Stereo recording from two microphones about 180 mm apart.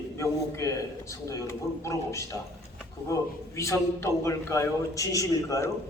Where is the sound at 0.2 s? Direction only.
15° left (ahead or behind).